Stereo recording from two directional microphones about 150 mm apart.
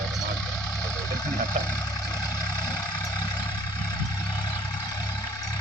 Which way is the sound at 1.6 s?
25° left (ahead or behind).